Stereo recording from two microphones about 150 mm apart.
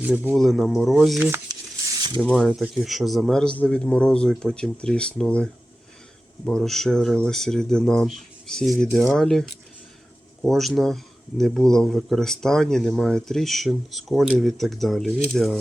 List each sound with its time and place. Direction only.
0.0 s speech: 10° right (ahead or behind)
0.3 s speech: centre (ahead or behind)
1.5 s a sound: 25° right (ahead or behind)
2.2 s speech: 5° left (ahead or behind)